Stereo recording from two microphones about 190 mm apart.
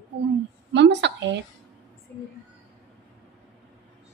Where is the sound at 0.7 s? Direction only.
65° right (ahead or behind).